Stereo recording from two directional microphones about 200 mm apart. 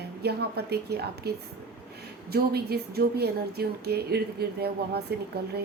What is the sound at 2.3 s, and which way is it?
A woman's voice, 50° right (ahead or behind).